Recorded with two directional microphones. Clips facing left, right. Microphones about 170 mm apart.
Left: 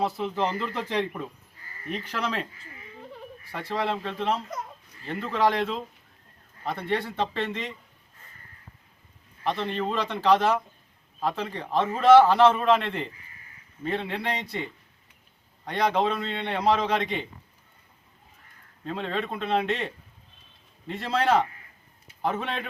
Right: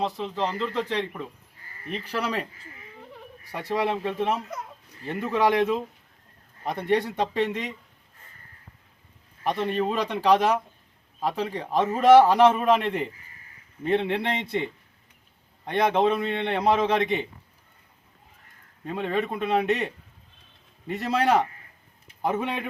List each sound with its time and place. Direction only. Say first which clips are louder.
0.3 s speech: even; 10° left (ahead or behind)
2.1 s a man's voice: right 3 dB; 10° right (ahead or behind)
3.5 s a man's voice: right 3 dB; 15° right (ahead or behind)
9.4 s a man's voice: right 3 dB; 15° right (ahead or behind)
15.6 s a man's voice: right 3 dB; 20° right (ahead or behind)
18.9 s a man's voice: right 3 dB; 15° right (ahead or behind)